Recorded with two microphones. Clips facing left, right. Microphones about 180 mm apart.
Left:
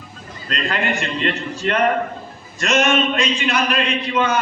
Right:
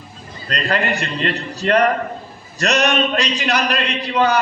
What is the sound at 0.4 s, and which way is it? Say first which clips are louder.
A man's voice: right 2 dB; 35° right (ahead or behind).